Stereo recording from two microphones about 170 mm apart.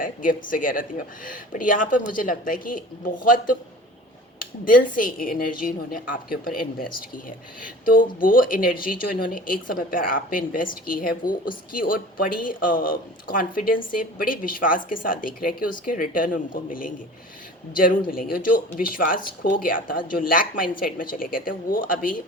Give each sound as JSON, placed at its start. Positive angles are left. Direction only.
{"t": 0.0, "sound": "speech", "side_deg": 55}
{"t": 18.1, "sound": "speech", "side_deg": 60}